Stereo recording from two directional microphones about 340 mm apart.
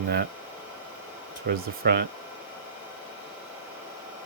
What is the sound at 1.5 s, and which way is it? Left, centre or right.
Speech, right.